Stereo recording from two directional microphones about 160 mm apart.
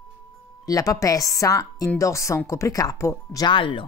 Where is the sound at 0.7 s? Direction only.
20° left (ahead or behind).